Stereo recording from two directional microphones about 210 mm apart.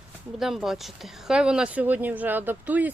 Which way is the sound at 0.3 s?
Centre (ahead or behind).